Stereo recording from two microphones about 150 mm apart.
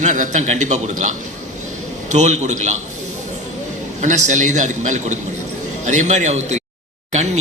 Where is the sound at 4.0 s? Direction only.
55° right (ahead or behind).